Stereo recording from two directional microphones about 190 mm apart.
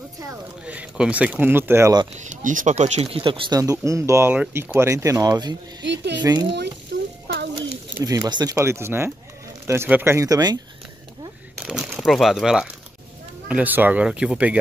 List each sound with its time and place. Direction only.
0.2 s speech: 10° right (ahead or behind)
2.1 s speech: 40° right (ahead or behind); by 5.6 s 20° right (ahead or behind)
5.8 s speech: 65° right (ahead or behind)
6.9 s a sound: 70° right (ahead or behind)
7.5 s speech: 20° right (ahead or behind)
11.6 s speech: 5° right (ahead or behind)